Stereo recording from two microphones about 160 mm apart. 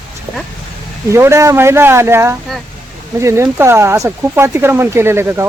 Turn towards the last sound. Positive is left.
turn(degrees=-15)  # may be behind; listen again after turning